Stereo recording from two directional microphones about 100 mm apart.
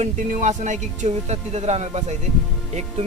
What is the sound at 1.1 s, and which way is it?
Speech, 90° right.